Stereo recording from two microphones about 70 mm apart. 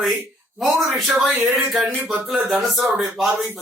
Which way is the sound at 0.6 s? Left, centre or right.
Right.